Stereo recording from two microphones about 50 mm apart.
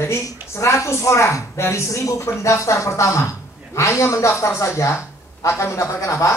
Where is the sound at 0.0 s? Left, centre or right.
Left.